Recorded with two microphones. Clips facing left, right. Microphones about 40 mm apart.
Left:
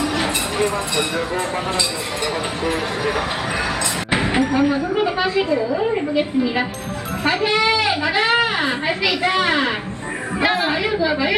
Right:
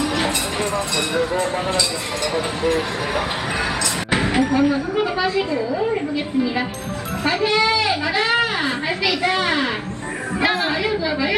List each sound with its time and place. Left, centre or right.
4.1 s a woman's voice: centre
7.4 s a child's voice: left